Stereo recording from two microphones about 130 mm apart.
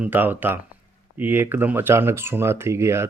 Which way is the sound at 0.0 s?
15° right (ahead or behind).